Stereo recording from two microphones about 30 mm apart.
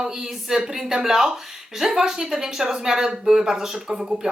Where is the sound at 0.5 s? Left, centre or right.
Centre.